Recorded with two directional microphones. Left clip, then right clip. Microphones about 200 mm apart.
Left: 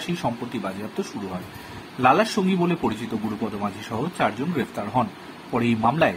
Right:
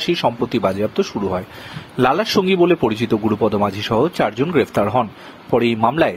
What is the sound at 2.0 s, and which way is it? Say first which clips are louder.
Speech: right 3 dB; 45° right (ahead or behind).